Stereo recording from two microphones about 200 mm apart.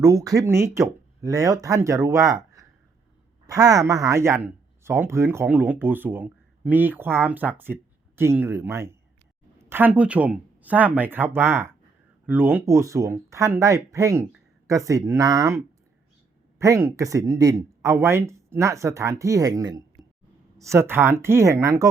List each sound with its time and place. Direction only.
0.0 s speech: 15° right (ahead or behind)